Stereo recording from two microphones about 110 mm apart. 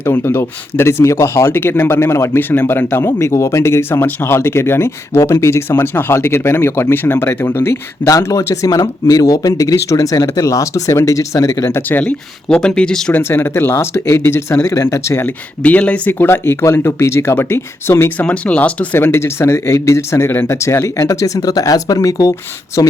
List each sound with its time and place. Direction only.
0.0 s speech: 20° left (ahead or behind)
11.9 s speech: 15° left (ahead or behind)
13.1 s speech: 20° left (ahead or behind)
15.6 s speech: 15° left (ahead or behind)
18.3 s speech: 10° left (ahead or behind); by 22.9 s 30° left (ahead or behind)